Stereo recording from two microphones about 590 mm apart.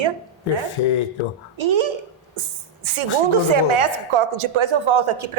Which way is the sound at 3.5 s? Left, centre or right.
Right.